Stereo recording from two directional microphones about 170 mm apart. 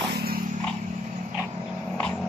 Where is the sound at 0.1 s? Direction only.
65° right (ahead or behind).